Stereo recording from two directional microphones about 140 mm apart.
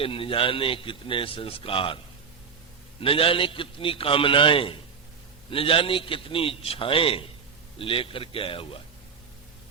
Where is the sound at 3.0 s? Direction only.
40° left (ahead or behind).